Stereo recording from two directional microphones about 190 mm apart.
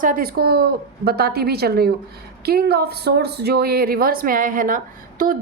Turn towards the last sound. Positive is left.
turn(degrees=-45)  # may be behind; listen again after turning